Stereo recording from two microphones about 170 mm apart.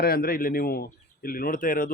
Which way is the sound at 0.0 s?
60° left (ahead or behind).